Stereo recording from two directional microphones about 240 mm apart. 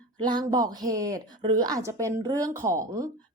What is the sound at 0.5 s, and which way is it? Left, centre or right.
A woman's voice, centre.